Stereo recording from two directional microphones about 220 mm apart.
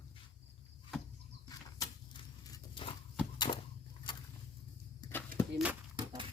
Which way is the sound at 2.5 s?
20° left (ahead or behind).